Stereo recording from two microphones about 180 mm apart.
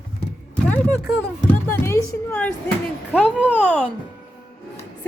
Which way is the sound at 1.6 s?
15° left (ahead or behind).